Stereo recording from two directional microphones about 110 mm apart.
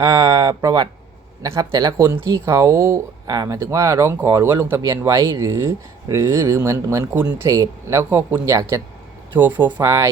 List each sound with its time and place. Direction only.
0.0 s speech: 35° right (ahead or behind)
1.7 s speech: 45° right (ahead or behind)
2.5 s speech: 30° right (ahead or behind)
5.1 s speech: 45° right (ahead or behind)
5.4 s speech: 25° right (ahead or behind)
9.3 s speech: 15° right (ahead or behind)
9.7 s speech: 30° right (ahead or behind)